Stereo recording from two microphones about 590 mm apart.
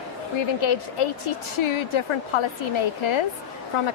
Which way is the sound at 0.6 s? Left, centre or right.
Left.